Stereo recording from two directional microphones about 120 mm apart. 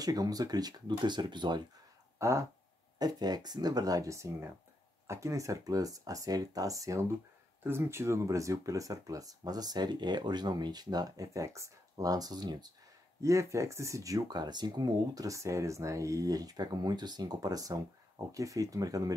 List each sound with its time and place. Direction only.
0.0 s speech: 30° right (ahead or behind)
2.1 s speech: 25° right (ahead or behind)
3.0 s speech: 35° right (ahead or behind)
13.2 s speech: 25° right (ahead or behind)